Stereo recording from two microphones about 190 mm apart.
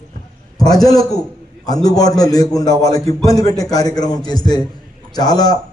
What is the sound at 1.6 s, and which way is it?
A man's voice, 20° left (ahead or behind).